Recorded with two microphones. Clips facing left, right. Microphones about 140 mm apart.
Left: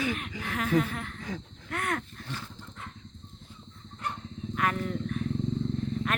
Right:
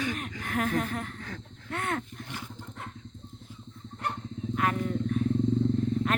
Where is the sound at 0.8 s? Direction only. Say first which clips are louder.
Left 2 dB; 45° right (ahead or behind).